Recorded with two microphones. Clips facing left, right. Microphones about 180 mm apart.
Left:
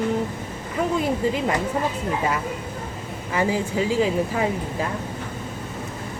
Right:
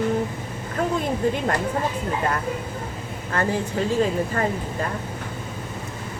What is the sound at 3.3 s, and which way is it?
Speech, 10° left (ahead or behind).